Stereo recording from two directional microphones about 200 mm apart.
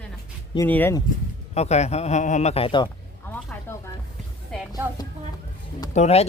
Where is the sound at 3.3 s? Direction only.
10° left (ahead or behind).